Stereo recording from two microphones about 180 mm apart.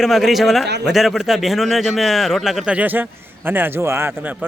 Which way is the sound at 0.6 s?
70° right (ahead or behind).